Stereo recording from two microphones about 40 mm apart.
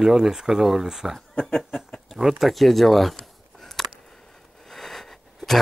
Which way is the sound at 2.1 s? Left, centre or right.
Centre.